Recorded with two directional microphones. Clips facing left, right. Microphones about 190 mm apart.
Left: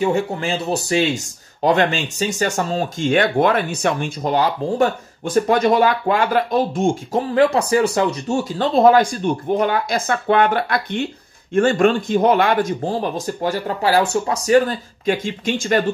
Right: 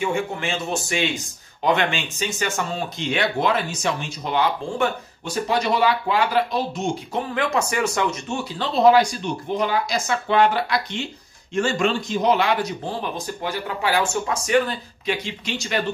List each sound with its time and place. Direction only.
0.0 s speech: 35° left (ahead or behind)